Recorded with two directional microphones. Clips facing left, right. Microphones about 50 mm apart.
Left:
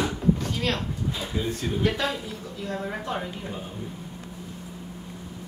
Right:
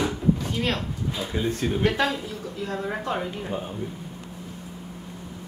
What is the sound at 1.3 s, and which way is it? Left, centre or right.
Speech, right.